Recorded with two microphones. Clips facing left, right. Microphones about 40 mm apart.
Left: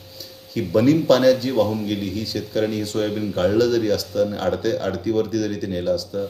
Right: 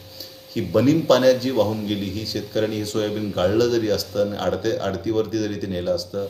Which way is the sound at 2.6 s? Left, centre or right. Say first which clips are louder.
Left 1 dB; centre.